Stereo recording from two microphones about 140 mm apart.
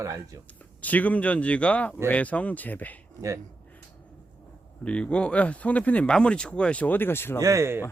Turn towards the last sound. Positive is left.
turn(degrees=-20)  # may be behind; listen again after turning